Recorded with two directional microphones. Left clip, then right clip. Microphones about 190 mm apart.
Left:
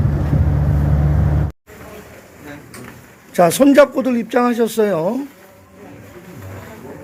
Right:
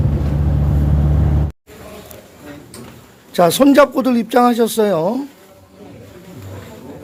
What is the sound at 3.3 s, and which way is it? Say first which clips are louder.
Speech: even; 5° right (ahead or behind).